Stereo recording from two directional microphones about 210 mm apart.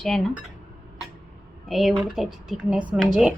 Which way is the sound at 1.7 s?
Centre (ahead or behind).